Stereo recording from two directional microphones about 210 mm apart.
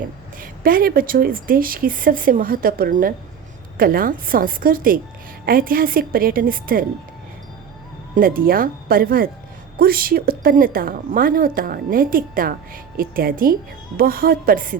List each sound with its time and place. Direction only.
0.3 s a woman's voice: 45° right (ahead or behind)
8.1 s a woman's voice: 45° right (ahead or behind)